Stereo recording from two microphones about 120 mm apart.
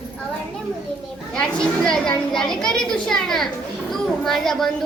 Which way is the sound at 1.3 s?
5° left (ahead or behind).